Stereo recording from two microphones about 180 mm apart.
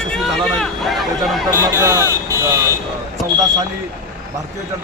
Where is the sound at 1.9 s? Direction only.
15° right (ahead or behind).